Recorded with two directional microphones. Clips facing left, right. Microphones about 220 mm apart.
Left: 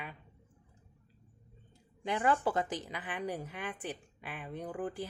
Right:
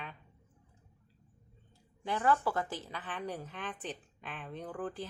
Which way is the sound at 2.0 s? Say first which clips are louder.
Even; 15° left (ahead or behind).